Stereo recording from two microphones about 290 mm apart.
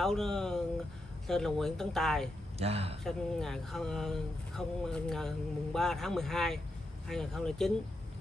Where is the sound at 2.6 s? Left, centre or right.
Right.